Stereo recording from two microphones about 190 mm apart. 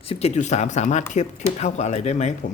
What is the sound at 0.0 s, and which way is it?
Speech, 30° left (ahead or behind).